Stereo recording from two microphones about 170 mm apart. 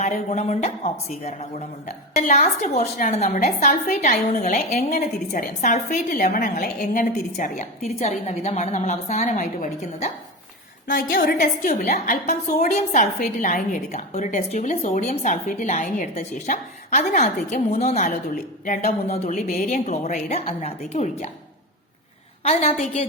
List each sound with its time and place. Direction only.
0.0 s a woman's voice: 45° left (ahead or behind)